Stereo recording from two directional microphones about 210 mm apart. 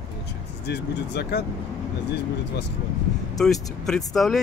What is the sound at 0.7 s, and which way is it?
Speech, 55° left (ahead or behind).